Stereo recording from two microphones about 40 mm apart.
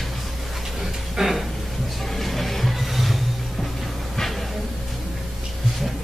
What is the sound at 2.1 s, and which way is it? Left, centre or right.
Music, centre.